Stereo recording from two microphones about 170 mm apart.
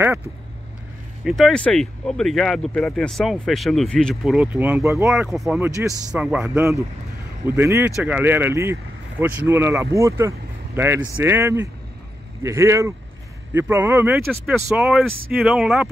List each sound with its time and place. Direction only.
1.2 s speech: centre (ahead or behind); by 5.1 s 15° right (ahead or behind)
5.1 s speech: centre (ahead or behind)